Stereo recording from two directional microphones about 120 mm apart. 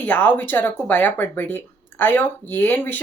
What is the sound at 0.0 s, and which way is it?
Speech, 15° left (ahead or behind).